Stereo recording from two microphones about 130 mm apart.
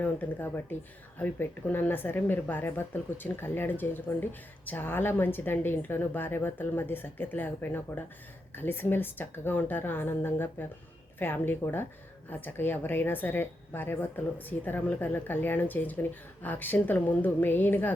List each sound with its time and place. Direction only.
0.0 s speech: 15° left (ahead or behind)